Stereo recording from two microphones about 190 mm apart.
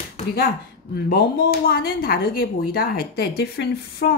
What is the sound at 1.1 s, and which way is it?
Speech, 50° left (ahead or behind).